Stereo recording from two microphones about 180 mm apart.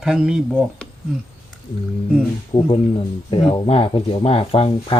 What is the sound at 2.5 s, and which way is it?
Speech, 30° left (ahead or behind).